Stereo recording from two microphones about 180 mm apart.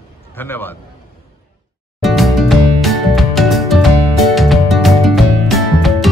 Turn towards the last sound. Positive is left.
turn(degrees=0)  # may be behind; listen again after turning